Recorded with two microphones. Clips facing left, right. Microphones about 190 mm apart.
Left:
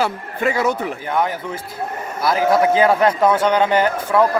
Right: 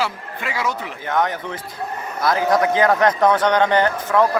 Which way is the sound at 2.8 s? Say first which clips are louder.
Left 1 dB; 10° left (ahead or behind).